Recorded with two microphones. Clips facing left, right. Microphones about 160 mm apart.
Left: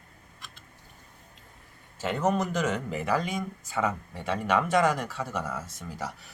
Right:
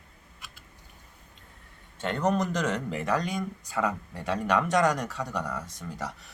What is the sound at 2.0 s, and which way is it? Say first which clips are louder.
Speech: even; 5° left (ahead or behind).